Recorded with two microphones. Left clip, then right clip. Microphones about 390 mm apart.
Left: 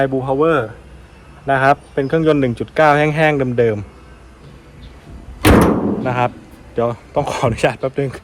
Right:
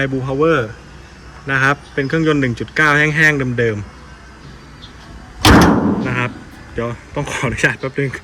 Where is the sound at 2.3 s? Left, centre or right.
Centre.